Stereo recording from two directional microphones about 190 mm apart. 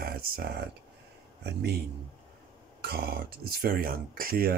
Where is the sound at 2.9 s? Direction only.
55° right (ahead or behind).